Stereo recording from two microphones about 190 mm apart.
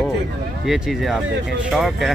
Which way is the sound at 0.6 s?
5° right (ahead or behind).